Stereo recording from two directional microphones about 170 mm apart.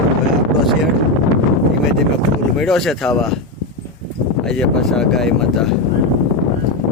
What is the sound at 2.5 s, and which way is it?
Speech, centre (ahead or behind).